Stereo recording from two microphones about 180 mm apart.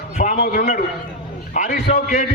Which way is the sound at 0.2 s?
55° left (ahead or behind).